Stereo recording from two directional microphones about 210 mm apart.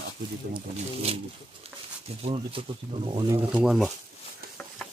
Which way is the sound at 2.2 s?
25° right (ahead or behind).